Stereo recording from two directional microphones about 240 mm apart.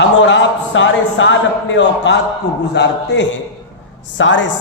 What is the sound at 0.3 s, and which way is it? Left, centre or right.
Speech, left.